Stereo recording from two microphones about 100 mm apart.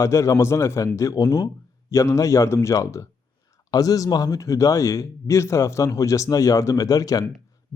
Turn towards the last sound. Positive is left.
turn(degrees=35)  # may be behind; listen again after turning